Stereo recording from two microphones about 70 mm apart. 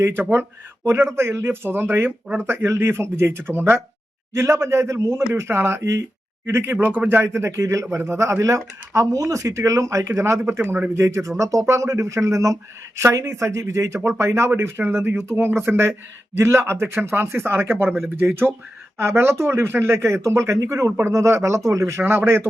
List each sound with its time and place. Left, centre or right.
0.0 s speech: right
10.6 s speech: right
11.0 s speech: right
22.0 s speech: right